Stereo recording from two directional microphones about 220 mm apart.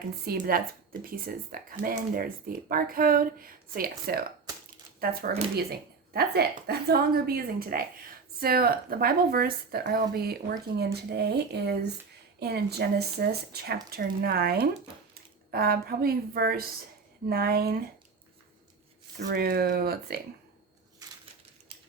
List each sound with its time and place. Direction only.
0.3 s speech: 40° right (ahead or behind)
19.2 s speech: 45° right (ahead or behind)